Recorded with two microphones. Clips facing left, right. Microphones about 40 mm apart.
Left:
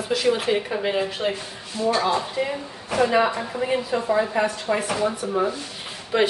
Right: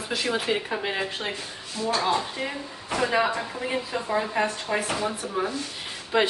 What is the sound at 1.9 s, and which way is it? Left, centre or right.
Speech, left.